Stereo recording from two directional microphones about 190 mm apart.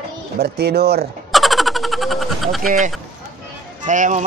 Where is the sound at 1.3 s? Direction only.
Centre (ahead or behind).